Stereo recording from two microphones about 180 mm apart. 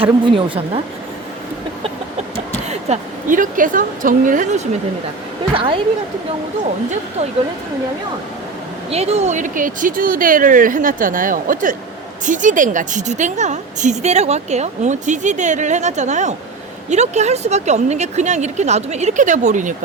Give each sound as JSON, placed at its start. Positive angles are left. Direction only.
{"t": 0.0, "sound": "a woman's voice", "side_deg": -30}
{"t": 2.6, "sound": "speech", "side_deg": -45}
{"t": 5.5, "sound": "a woman's voice", "side_deg": -30}
{"t": 8.9, "sound": "a woman's voice", "side_deg": -35}